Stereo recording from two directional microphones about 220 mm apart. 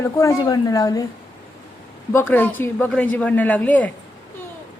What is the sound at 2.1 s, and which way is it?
A man's voice, 10° left (ahead or behind).